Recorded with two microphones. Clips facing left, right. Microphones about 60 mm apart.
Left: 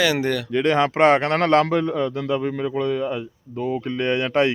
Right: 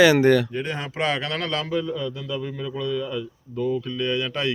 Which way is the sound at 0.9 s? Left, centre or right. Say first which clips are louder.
Left 5 dB; left.